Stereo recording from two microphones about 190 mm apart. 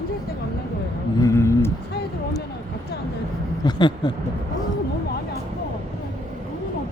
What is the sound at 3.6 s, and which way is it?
Speech, 25° left (ahead or behind).